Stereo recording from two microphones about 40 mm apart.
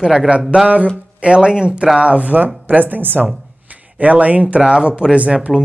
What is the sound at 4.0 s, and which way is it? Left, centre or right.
Speech, right.